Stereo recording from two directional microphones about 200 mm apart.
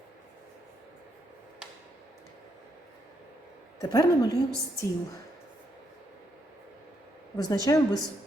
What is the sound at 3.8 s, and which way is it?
Speech, 20° left (ahead or behind).